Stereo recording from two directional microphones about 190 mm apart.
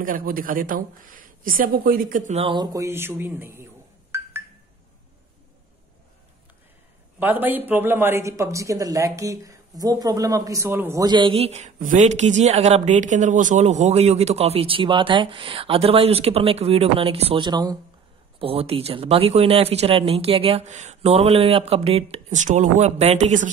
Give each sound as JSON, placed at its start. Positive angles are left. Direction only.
{"t": 0.0, "sound": "speech", "side_deg": -50}
{"t": 2.5, "sound": "speech", "side_deg": -20}
{"t": 4.1, "sound": "a sound", "side_deg": -15}
{"t": 7.2, "sound": "a man's voice", "side_deg": -10}